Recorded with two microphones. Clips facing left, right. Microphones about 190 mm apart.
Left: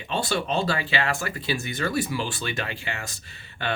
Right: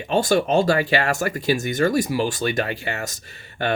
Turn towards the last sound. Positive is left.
turn(degrees=-40)  # may be behind; listen again after turning